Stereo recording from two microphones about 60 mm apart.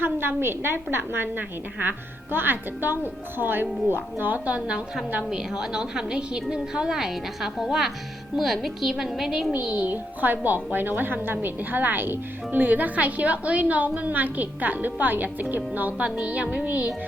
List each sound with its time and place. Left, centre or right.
0.0 s a woman's voice: right; by 9.5 s centre
9.5 s a woman's voice: right